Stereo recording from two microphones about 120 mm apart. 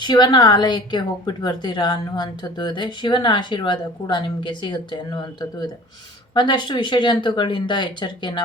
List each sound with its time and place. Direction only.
0.0 s a woman's voice: 40° left (ahead or behind)